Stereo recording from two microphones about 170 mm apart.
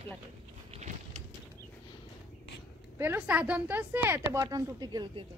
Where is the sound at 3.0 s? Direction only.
10° right (ahead or behind).